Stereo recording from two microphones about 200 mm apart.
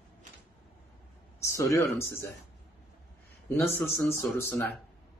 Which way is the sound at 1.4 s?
15° left (ahead or behind).